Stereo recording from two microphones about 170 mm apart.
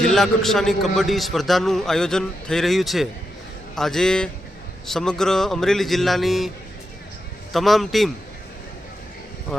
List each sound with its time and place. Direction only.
0.0 s a man's voice: centre (ahead or behind)
7.5 s a man's voice: centre (ahead or behind)
9.5 s a man's voice: 5° left (ahead or behind)